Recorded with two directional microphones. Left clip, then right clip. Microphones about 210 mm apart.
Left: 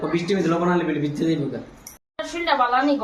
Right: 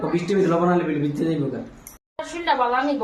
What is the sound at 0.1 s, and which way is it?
Speech, 15° right (ahead or behind).